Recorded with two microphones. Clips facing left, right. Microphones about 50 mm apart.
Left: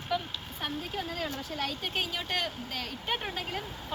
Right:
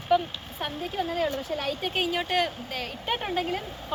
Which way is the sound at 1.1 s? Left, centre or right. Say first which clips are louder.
Right 7 dB; centre.